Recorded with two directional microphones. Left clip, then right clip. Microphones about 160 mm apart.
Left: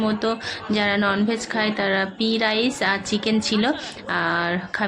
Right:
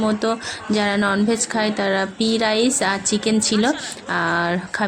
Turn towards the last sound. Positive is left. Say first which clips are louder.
# right 2 dB
turn(degrees=-35)  # may be behind; listen again after turning